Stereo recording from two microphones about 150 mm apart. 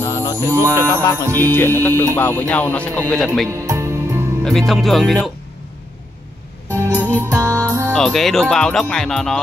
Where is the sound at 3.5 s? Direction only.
20° right (ahead or behind).